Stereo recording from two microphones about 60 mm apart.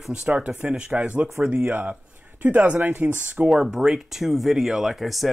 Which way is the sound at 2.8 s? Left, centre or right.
Right.